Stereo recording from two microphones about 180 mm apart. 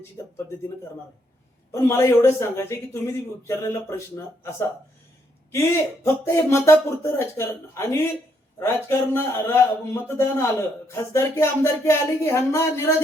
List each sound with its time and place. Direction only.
1.7 s a man's voice: 15° left (ahead or behind)
5.5 s a man's voice: 15° left (ahead or behind)